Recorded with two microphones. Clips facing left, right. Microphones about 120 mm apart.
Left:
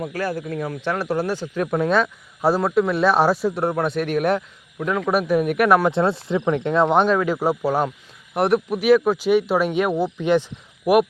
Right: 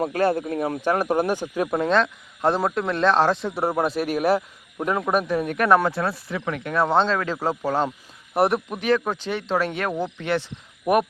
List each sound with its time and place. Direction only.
0.3 s speech: 30° right (ahead or behind)
0.8 s speech: 45° right (ahead or behind)
1.0 s speech: 20° right (ahead or behind)
1.8 s speech: 10° left (ahead or behind)
5.0 s speech: 5° left (ahead or behind)
5.9 s speech: 25° left (ahead or behind)
8.3 s speech: centre (ahead or behind); by 10.5 s 15° left (ahead or behind)
10.9 s speech: 5° left (ahead or behind)